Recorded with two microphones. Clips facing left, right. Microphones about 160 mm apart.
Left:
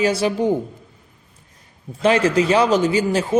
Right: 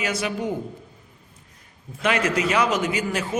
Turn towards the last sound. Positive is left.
turn(degrees=30)  # may be behind; listen again after turning